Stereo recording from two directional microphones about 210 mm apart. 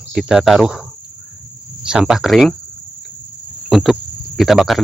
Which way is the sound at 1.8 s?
5° right (ahead or behind).